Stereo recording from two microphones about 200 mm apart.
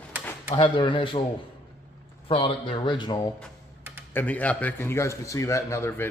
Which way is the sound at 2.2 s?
25° left (ahead or behind).